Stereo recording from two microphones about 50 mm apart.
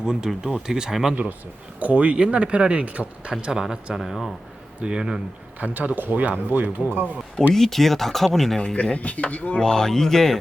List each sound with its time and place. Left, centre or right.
0.0 s speech: centre
1.8 s speech: right
3.4 s speech: centre
4.8 s speech: centre
5.5 s speech: right
7.5 s speech: centre
8.6 s speech: left
9.6 s speech: centre